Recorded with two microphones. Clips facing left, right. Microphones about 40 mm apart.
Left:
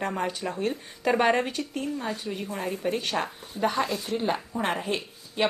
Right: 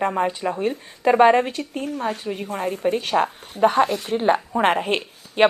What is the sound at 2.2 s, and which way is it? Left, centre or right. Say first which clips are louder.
Speech: right 5 dB; right.